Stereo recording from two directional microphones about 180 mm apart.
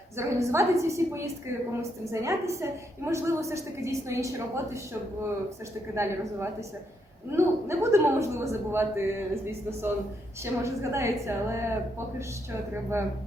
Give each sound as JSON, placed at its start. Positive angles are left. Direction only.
{"t": 0.2, "sound": "a man's voice", "side_deg": -15}
{"t": 5.9, "sound": "a man's voice", "side_deg": -15}